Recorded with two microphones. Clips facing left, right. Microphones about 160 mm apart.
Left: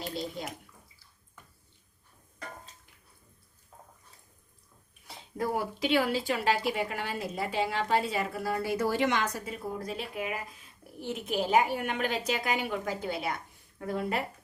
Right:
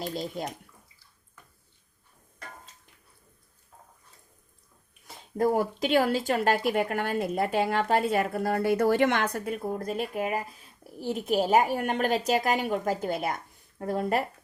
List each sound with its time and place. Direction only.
5.0 s a woman's voice: 45° right (ahead or behind)